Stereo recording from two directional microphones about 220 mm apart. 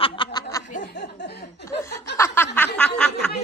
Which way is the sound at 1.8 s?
10° left (ahead or behind).